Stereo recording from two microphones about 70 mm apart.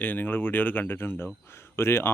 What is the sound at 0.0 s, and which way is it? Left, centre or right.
Speech, left.